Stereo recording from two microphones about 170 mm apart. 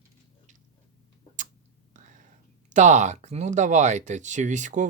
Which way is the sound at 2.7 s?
45° right (ahead or behind).